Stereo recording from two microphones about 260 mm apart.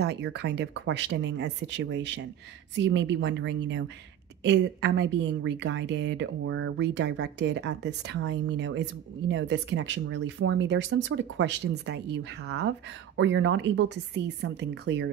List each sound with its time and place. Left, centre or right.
0.0 s a woman's voice: right